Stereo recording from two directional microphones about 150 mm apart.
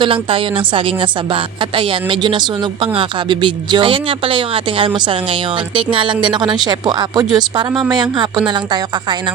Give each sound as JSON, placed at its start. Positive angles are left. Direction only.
{"t": 0.0, "sound": "a woman's voice", "side_deg": -35}